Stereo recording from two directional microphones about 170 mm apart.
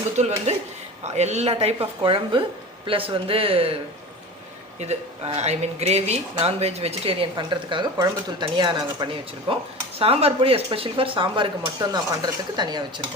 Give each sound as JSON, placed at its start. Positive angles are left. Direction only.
{"t": 0.2, "sound": "speech", "side_deg": -40}
{"t": 4.8, "sound": "speech", "side_deg": -40}